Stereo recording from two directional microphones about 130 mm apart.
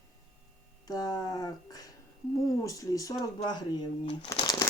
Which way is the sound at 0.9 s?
30° left (ahead or behind).